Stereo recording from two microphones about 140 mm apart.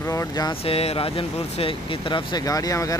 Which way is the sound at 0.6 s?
45° left (ahead or behind).